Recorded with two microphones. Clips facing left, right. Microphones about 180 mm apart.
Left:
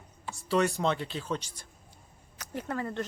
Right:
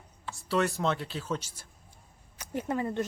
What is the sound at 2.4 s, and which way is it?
Speech, 20° right (ahead or behind).